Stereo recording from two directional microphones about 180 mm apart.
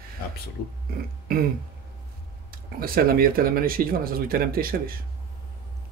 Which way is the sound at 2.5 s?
55° right (ahead or behind).